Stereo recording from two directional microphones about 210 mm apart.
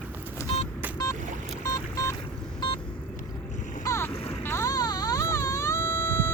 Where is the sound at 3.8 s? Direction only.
15° left (ahead or behind).